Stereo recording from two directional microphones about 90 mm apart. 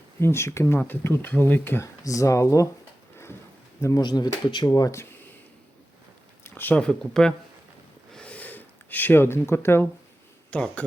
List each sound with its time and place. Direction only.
0.2 s speech: 30° left (ahead or behind)
2.0 s speech: 35° left (ahead or behind)
3.8 s speech: 35° left (ahead or behind)
4.0 s speech: 50° left (ahead or behind)
6.4 s speech: 20° left (ahead or behind)
8.1 s a sound: 15° left (ahead or behind)
10.5 s speech: 15° left (ahead or behind)